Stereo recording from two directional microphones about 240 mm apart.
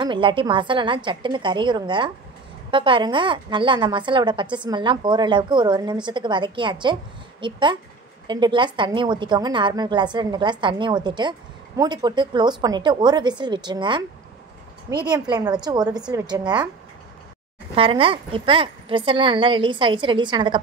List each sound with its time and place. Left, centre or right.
0.0 s a woman's voice: right
15.0 s a woman's voice: centre
17.7 s a woman's voice: right